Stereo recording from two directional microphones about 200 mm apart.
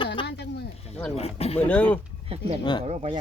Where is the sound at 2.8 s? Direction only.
35° right (ahead or behind).